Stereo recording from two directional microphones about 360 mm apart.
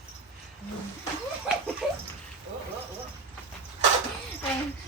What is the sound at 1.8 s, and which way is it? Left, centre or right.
Bathtub, centre.